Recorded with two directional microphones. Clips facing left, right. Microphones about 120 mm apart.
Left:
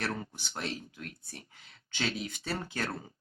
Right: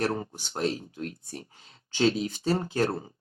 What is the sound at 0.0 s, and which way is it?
Speech, 35° right (ahead or behind).